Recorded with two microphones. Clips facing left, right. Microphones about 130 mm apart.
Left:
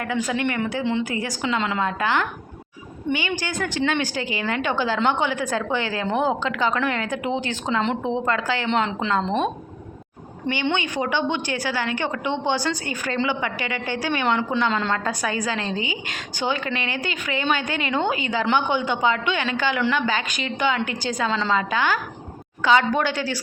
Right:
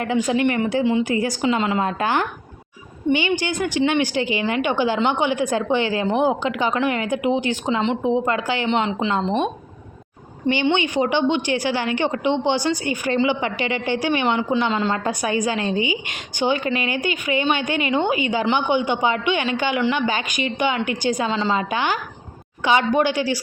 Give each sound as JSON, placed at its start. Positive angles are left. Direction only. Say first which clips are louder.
{"t": 0.0, "sound": "a woman's voice", "louder": "right 5 dB", "side_deg": -20}
{"t": 8.7, "sound": "a woman's voice", "louder": "right 1 dB", "side_deg": -5}
{"t": 10.5, "sound": "a woman's voice", "louder": "right 5 dB", "side_deg": -25}
{"t": 14.3, "sound": "speech", "louder": "left 1 dB", "side_deg": -10}
{"t": 14.9, "sound": "a woman's voice", "louder": "right 3 dB", "side_deg": -20}
{"t": 21.2, "sound": "a woman's voice", "louder": "right 2 dB", "side_deg": -5}
{"t": 21.5, "sound": "a woman's voice", "louder": "even", "side_deg": -20}